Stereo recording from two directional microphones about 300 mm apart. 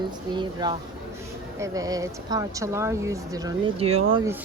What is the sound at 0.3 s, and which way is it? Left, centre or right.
Speech, centre.